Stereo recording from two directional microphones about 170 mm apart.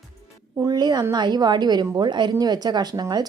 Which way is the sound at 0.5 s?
20° right (ahead or behind).